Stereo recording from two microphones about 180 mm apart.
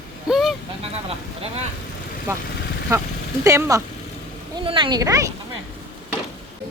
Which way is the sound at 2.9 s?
15° right (ahead or behind).